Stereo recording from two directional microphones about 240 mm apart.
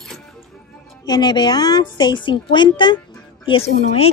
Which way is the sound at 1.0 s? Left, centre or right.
Centre.